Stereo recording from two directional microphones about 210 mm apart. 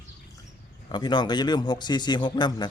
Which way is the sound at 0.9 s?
20° left (ahead or behind).